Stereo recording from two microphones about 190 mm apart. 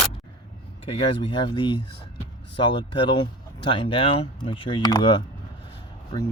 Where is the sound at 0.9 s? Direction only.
25° left (ahead or behind).